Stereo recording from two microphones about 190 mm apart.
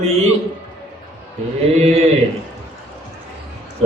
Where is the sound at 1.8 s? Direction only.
35° right (ahead or behind).